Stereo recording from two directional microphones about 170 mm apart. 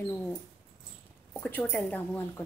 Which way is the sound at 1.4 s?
10° left (ahead or behind).